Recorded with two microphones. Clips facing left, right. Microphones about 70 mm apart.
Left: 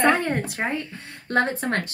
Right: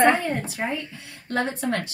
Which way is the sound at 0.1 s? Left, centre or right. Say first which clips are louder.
Left 1 dB; left.